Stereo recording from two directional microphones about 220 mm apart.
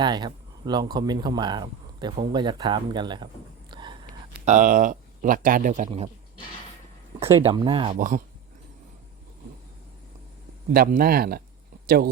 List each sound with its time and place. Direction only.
0.0 s speech: 20° right (ahead or behind)
3.7 s a sound: 20° right (ahead or behind)
4.4 s speech: 35° right (ahead or behind)
7.3 s speech: 20° right (ahead or behind)
7.9 s speech: 35° right (ahead or behind)
10.7 s speech: 40° right (ahead or behind)